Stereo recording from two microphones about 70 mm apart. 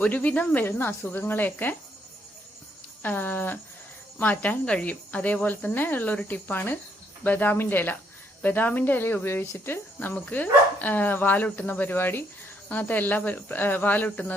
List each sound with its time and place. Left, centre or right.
0.0 s speech: left
3.0 s speech: left
10.2 s speech: left